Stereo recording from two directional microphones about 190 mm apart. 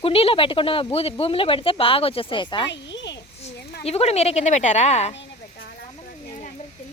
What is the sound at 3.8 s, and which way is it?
A woman's voice, 35° left (ahead or behind).